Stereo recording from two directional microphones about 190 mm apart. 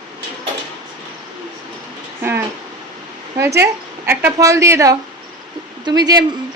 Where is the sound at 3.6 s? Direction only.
10° right (ahead or behind).